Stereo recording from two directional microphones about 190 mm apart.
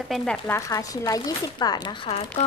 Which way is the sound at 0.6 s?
15° left (ahead or behind).